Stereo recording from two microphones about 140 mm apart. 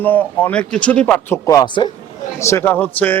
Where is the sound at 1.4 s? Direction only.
30° left (ahead or behind).